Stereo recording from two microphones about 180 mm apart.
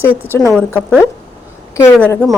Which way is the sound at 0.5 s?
5° left (ahead or behind).